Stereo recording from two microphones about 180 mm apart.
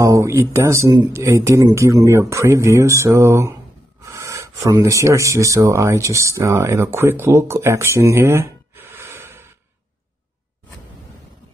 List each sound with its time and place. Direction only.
0.0 s speech: 15° right (ahead or behind)